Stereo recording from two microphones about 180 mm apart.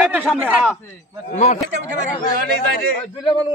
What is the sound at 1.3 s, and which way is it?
Speech, 40° left (ahead or behind).